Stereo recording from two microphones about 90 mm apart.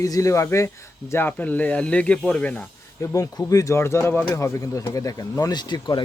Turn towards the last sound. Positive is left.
turn(degrees=55)  # may be behind; listen again after turning